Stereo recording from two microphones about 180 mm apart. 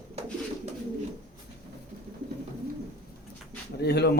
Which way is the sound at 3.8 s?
65° left (ahead or behind).